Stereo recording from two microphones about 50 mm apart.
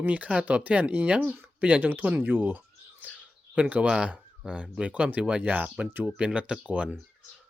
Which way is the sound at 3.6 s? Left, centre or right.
Right.